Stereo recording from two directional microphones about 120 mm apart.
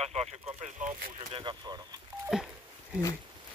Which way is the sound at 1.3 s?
40° right (ahead or behind).